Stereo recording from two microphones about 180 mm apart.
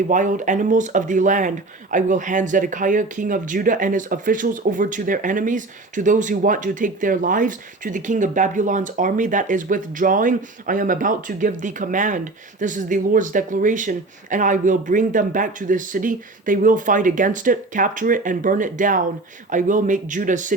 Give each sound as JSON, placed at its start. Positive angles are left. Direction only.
{"t": 0.1, "sound": "speech", "side_deg": -45}